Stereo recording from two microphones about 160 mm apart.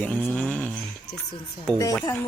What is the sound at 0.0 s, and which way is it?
Jingle bell, 10° left (ahead or behind).